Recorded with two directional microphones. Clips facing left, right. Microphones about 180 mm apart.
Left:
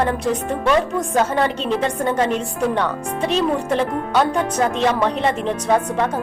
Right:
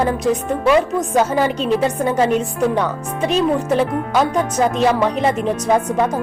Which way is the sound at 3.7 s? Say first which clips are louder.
Right 2 dB; 5° right (ahead or behind).